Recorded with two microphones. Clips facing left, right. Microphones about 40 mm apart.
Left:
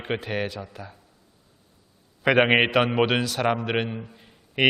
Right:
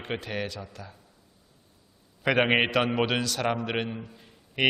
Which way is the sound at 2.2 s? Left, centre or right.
Centre.